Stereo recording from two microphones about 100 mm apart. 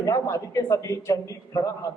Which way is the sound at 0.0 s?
30° left (ahead or behind).